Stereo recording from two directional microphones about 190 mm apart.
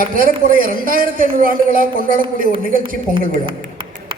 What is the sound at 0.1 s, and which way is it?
A woman's voice, 45° right (ahead or behind).